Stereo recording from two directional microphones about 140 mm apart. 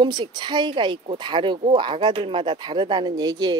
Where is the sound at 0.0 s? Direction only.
35° right (ahead or behind).